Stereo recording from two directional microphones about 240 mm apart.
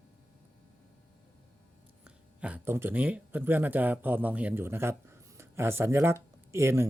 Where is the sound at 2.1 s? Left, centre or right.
Centre.